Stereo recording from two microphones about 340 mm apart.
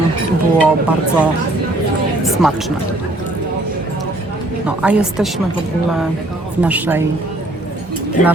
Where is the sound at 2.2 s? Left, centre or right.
Centre.